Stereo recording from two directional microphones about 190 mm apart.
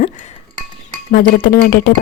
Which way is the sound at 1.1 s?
50° left (ahead or behind).